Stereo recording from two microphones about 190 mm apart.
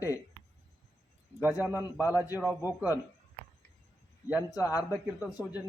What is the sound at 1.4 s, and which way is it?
Speech, 10° right (ahead or behind).